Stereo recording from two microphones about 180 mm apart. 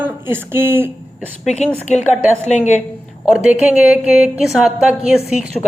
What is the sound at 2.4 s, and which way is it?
Speech, 40° left (ahead or behind).